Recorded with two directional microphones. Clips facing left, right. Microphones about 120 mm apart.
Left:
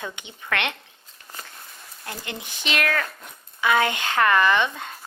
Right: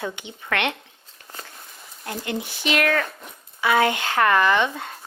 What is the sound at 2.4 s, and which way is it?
Speech, 20° left (ahead or behind).